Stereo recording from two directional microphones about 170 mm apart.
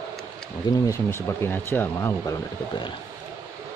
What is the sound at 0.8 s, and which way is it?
Speech, 15° left (ahead or behind).